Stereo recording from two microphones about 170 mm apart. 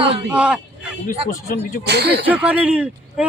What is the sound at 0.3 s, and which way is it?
Speech, 5° right (ahead or behind).